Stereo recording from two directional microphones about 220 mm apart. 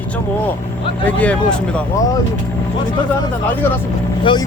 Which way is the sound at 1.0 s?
5° left (ahead or behind).